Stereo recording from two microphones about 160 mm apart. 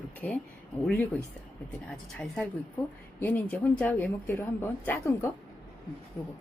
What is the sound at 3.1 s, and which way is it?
A woman's voice, 10° left (ahead or behind).